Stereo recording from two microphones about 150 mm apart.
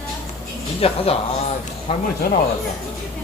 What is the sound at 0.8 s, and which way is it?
Speech, 40° left (ahead or behind).